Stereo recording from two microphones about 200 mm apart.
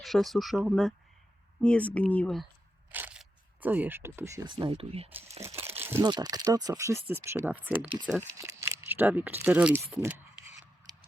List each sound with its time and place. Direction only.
0.0 s speech: centre (ahead or behind)
2.9 s single-lens reflex camera: 5° right (ahead or behind)
4.4 s speech: 25° right (ahead or behind)
5.5 s crumpling: 10° right (ahead or behind)
6.0 s speech: 20° right (ahead or behind)
8.0 s speech: 5° left (ahead or behind)
8.4 s speech: 15° right (ahead or behind)